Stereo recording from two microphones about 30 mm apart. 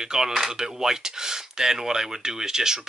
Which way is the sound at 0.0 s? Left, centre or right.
Centre.